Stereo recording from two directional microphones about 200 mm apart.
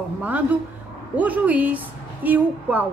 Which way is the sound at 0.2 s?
10° right (ahead or behind).